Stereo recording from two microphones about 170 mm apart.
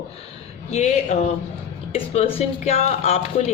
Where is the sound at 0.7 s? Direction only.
40° left (ahead or behind).